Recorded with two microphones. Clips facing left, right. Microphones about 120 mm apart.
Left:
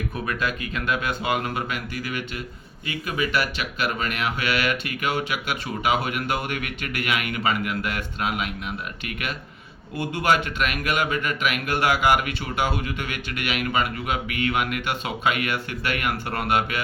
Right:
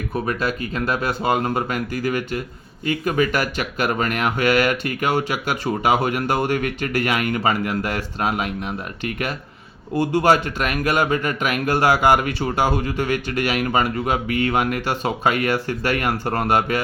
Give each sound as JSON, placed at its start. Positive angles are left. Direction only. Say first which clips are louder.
{"t": 0.1, "sound": "speech", "louder": "right 4 dB", "side_deg": -35}